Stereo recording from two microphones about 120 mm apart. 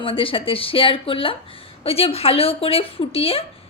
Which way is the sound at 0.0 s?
50° left (ahead or behind).